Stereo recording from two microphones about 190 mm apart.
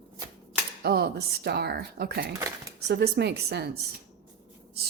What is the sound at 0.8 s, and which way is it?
Speech, 55° right (ahead or behind).